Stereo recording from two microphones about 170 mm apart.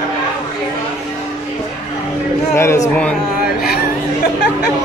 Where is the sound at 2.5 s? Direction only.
15° left (ahead or behind).